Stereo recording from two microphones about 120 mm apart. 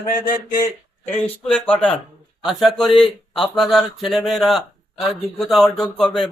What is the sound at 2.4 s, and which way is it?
Speech, centre (ahead or behind).